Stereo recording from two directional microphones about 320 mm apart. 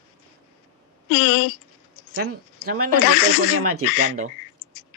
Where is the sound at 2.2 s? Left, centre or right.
Right.